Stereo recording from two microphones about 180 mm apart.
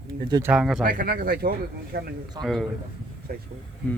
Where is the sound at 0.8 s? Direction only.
50° right (ahead or behind).